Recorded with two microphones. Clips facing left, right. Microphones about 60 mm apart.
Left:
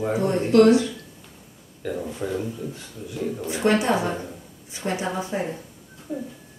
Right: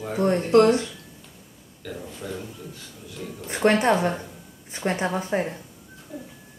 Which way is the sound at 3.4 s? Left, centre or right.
Right.